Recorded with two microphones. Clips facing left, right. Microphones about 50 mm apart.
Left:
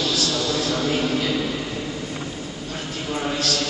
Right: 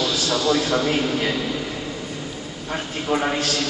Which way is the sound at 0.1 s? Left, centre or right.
Right.